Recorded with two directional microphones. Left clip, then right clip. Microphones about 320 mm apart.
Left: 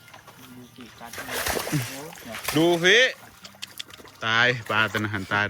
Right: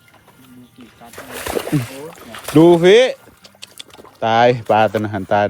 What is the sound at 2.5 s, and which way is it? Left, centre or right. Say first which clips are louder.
Speech: right 11 dB; right.